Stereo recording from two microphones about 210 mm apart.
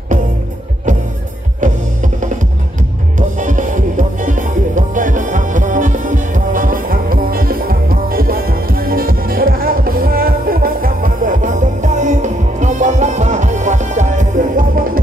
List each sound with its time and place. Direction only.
1.6 s music: 35° right (ahead or behind)
3.2 s music: 35° right (ahead or behind)